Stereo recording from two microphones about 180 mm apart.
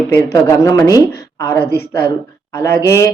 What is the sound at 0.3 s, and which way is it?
Speech, 15° left (ahead or behind).